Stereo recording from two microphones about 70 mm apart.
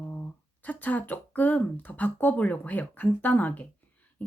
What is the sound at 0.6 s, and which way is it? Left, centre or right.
Speech, left.